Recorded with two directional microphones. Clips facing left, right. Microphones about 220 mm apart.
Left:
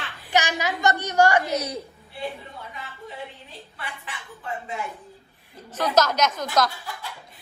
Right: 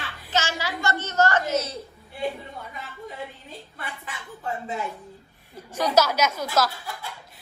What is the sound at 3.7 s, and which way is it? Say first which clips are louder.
Speech: left 1 dB; 45° right (ahead or behind).